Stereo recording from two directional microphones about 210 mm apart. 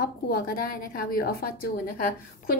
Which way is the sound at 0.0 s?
45° left (ahead or behind).